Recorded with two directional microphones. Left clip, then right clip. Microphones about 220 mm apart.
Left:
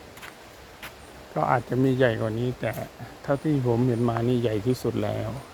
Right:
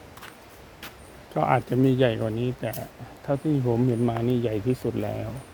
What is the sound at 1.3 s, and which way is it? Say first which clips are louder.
Speech: right 1 dB; 20° right (ahead or behind).